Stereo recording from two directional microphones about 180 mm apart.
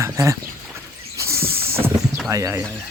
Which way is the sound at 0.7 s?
15° right (ahead or behind).